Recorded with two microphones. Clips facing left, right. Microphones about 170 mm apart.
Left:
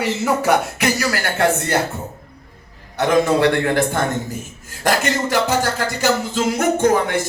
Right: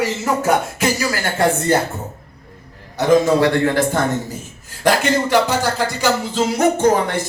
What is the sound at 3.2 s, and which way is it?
A man's voice, 55° left (ahead or behind).